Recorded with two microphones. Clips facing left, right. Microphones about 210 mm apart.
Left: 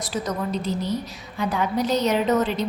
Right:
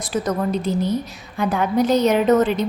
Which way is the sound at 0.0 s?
55° right (ahead or behind).